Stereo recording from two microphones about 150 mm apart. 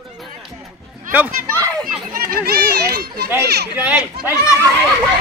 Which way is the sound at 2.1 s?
70° right (ahead or behind).